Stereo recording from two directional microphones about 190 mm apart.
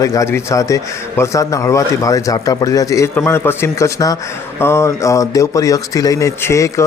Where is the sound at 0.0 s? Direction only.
15° left (ahead or behind).